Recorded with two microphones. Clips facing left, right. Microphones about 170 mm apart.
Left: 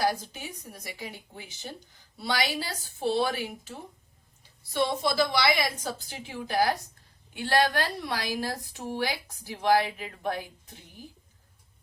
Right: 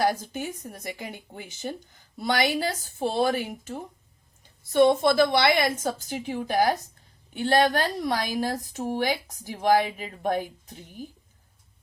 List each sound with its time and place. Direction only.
0.1 s a woman's voice: 50° right (ahead or behind)